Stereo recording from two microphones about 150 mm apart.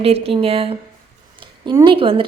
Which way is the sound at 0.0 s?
40° right (ahead or behind).